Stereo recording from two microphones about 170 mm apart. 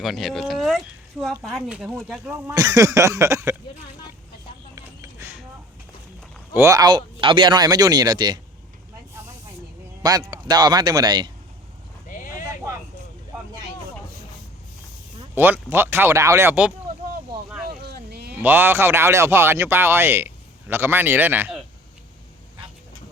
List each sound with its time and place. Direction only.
0.0 s speech: centre (ahead or behind)
2.6 s speech: 20° right (ahead or behind)
5.2 s a sound: 15° right (ahead or behind)
6.5 s speech: 15° right (ahead or behind)
10.0 s speech: 25° right (ahead or behind)
12.0 s clip-clop: 50° left (ahead or behind)
15.4 s speech: 10° right (ahead or behind)
17.7 s a sound: 65° right (ahead or behind)
18.3 s speech: 10° right (ahead or behind)